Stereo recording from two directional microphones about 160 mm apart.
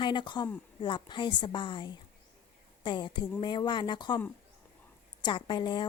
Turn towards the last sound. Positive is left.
turn(degrees=30)  # may be behind; listen again after turning